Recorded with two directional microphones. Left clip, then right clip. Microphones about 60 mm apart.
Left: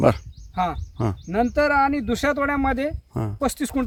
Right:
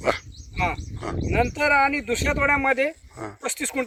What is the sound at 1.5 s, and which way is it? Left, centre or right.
Speech, left.